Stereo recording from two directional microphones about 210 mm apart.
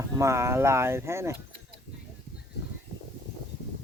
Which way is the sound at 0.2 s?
15° right (ahead or behind).